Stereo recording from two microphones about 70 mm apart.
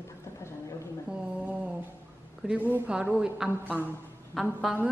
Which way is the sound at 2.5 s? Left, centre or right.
Right.